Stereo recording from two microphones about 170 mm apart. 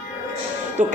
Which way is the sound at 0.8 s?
45° right (ahead or behind).